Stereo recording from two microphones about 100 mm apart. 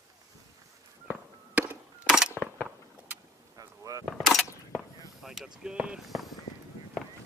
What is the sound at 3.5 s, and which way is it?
Vehicle, 35° right (ahead or behind).